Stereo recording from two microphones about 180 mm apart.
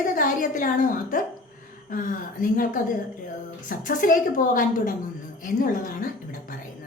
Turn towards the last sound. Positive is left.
turn(degrees=50)  # may be behind; listen again after turning